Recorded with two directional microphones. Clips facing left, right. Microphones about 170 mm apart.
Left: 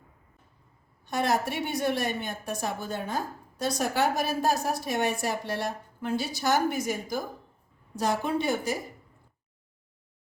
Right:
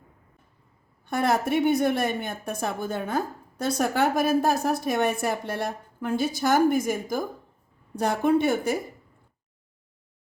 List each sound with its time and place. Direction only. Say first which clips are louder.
1.0 s a woman's voice: right 3 dB; 55° right (ahead or behind)